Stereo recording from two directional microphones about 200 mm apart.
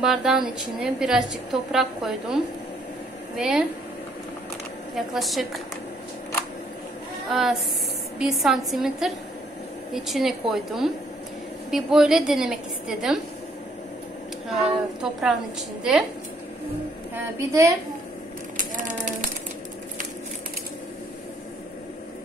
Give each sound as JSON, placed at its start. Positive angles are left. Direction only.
{"t": 0.0, "sound": "a woman's voice", "side_deg": 0}
{"t": 4.9, "sound": "a woman's voice", "side_deg": 0}
{"t": 7.2, "sound": "a woman's voice", "side_deg": 0}
{"t": 15.0, "sound": "a woman's voice", "side_deg": -5}
{"t": 17.1, "sound": "a woman's voice", "side_deg": -15}
{"t": 18.6, "sound": "a sound", "side_deg": -40}